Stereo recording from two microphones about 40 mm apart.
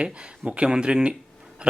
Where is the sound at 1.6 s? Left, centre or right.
Right.